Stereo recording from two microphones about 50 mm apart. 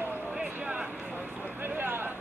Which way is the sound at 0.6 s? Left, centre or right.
Right.